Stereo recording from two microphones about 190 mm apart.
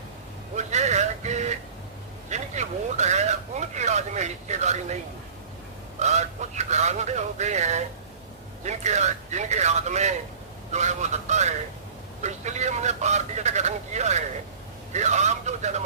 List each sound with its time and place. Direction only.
0.5 s vehicle: 35° right (ahead or behind)
2.3 s speech: 35° right (ahead or behind)
6.0 s speech: 35° right (ahead or behind)